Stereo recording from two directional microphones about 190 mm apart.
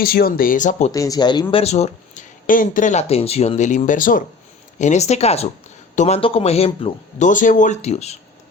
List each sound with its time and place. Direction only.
0.0 s speech: 50° left (ahead or behind)
0.9 s speech: 20° left (ahead or behind); by 8.2 s 35° left (ahead or behind)